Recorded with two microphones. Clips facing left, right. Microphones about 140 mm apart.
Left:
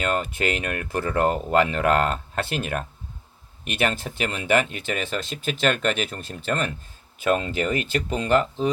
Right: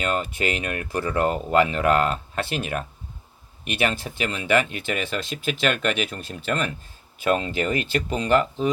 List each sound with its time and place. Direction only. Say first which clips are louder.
0.0 s speech: even; 50° left (ahead or behind)